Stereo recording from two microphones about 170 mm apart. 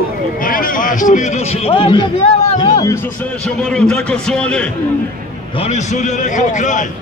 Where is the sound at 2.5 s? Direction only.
20° left (ahead or behind).